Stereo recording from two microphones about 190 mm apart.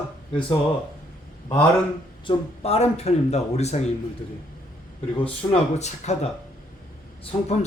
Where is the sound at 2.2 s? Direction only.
35° left (ahead or behind).